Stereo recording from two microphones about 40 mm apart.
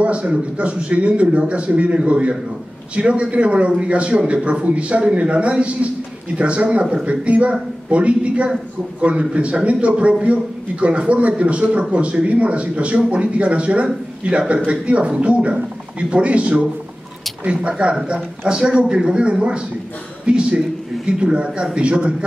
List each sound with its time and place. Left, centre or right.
0.0 s a man's voice: right